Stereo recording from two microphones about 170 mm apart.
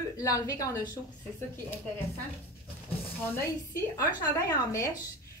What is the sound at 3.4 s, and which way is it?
A woman's voice, 15° left (ahead or behind).